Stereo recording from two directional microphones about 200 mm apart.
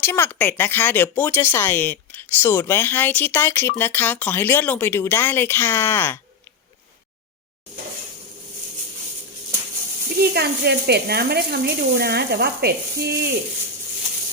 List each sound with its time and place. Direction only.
0.0 s speech: 10° left (ahead or behind)
10.2 s speech: 50° right (ahead or behind)